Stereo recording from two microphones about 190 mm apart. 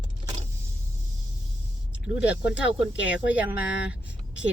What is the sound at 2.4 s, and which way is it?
Speech, 65° left (ahead or behind).